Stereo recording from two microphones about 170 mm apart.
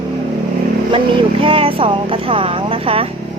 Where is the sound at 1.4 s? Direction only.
30° right (ahead or behind).